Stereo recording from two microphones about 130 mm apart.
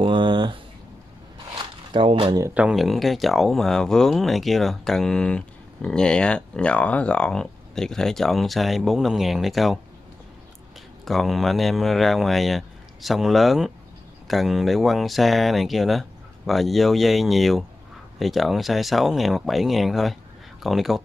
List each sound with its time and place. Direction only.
0.0 s a sound: 40° right (ahead or behind)
2.5 s speech: 5° right (ahead or behind)
11.1 s speech: centre (ahead or behind)